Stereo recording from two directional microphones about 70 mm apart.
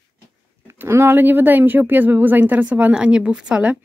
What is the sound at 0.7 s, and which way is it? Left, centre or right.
Speech, right.